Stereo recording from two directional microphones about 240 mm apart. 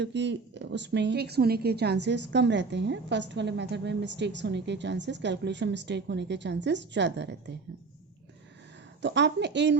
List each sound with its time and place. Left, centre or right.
0.0 s a woman's voice: right
9.0 s a woman's voice: right